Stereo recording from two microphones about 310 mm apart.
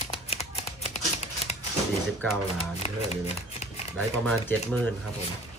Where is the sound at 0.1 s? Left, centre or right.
Centre.